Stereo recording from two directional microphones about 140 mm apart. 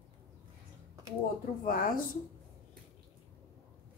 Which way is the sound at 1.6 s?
85° left.